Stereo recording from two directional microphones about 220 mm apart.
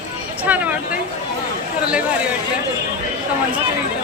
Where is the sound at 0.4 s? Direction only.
5° right (ahead or behind).